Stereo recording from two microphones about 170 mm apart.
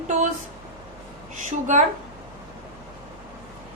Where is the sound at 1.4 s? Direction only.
45° right (ahead or behind).